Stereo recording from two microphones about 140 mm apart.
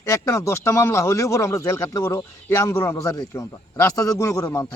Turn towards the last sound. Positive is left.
turn(degrees=25)  # may be behind; listen again after turning